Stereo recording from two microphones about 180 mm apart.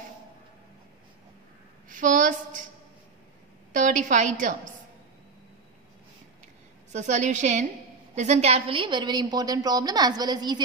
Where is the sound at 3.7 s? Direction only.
45° right (ahead or behind).